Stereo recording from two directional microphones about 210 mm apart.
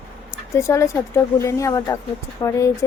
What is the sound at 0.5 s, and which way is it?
Speech, 15° left (ahead or behind).